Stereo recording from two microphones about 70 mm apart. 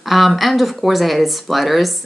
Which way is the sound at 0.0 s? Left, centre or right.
Centre.